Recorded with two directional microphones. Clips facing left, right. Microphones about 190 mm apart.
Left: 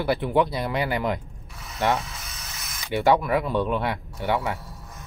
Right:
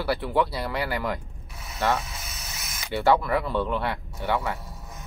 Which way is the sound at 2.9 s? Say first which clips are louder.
Left 1 dB; 15° left (ahead or behind).